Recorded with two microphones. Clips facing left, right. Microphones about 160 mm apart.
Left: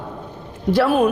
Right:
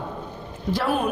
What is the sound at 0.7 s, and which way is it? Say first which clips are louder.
Speech: left 8 dB; 75° left (ahead or behind).